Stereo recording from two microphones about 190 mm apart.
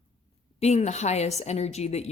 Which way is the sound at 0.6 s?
35° left (ahead or behind).